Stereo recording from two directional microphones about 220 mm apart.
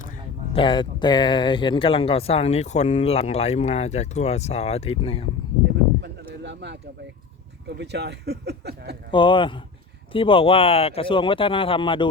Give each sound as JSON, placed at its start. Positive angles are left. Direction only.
{"t": 0.5, "sound": "speech", "side_deg": 20}
{"t": 6.0, "sound": "a sound", "side_deg": -50}
{"t": 7.7, "sound": "speech", "side_deg": -50}
{"t": 9.1, "sound": "speech", "side_deg": 20}